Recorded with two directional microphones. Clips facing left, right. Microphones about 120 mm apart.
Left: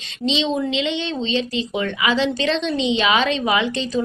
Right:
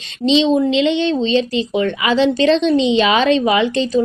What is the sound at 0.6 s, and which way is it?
Speech, 40° right (ahead or behind).